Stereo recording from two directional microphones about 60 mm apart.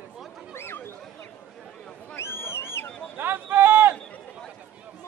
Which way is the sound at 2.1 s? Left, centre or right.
Left.